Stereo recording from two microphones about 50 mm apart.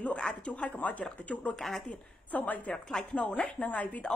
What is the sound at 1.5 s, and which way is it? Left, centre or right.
Speech, centre.